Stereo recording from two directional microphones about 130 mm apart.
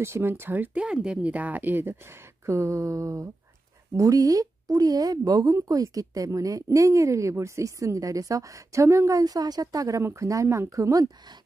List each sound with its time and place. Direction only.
0.0 s speech: 20° right (ahead or behind)